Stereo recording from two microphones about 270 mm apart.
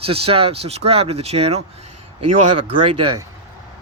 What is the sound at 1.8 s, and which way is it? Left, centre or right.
Speech, right.